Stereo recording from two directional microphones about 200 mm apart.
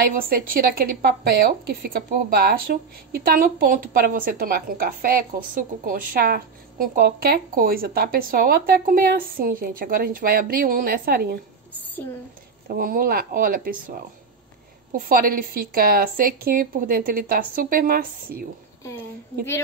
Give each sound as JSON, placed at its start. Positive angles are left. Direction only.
{"t": 0.0, "sound": "a woman's voice", "side_deg": -45}
{"t": 12.6, "sound": "a woman's voice", "side_deg": -45}